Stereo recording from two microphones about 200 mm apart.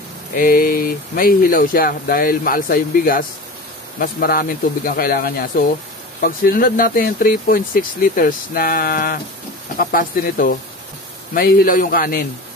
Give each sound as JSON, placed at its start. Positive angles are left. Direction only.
{"t": 0.4, "sound": "speech", "side_deg": 45}